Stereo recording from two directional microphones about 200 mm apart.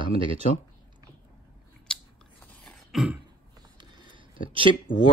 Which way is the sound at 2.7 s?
Centre (ahead or behind).